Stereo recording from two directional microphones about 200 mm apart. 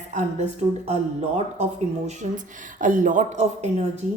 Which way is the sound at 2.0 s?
40° right (ahead or behind).